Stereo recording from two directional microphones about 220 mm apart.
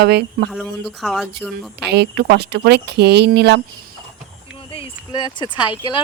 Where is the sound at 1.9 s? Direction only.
50° right (ahead or behind).